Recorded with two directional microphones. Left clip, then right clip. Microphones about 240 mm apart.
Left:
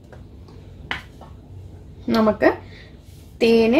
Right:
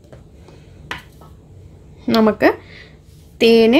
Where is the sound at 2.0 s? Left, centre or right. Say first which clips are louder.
Right 3 dB; right.